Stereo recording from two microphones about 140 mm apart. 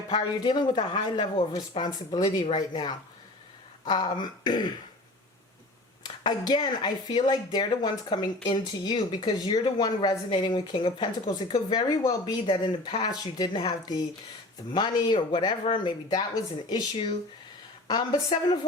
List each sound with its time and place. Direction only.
0.1 s a woman's voice: 30° left (ahead or behind)
6.2 s a woman's voice: 30° left (ahead or behind)